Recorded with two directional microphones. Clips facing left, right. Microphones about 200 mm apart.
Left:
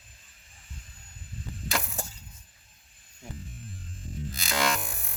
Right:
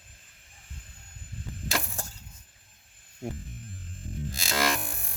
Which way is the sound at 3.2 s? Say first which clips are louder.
Right 9 dB; 55° right (ahead or behind).